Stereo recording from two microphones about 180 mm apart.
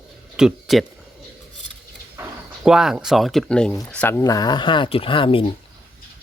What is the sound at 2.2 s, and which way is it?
Speech, 5° right (ahead or behind).